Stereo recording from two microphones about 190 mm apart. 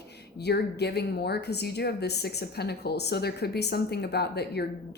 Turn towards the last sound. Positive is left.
turn(degrees=60)  # may be behind; listen again after turning